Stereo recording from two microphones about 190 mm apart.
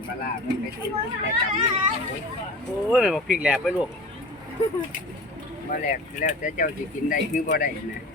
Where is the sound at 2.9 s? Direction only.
Centre (ahead or behind).